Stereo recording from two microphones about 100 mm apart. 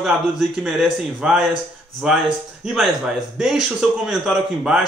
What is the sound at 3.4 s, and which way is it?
A man's voice, 5° right (ahead or behind).